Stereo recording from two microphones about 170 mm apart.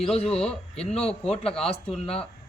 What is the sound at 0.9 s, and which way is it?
Speech, 35° left (ahead or behind).